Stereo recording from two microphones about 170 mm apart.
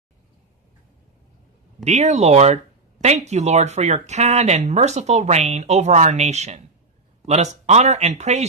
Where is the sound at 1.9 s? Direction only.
40° right (ahead or behind).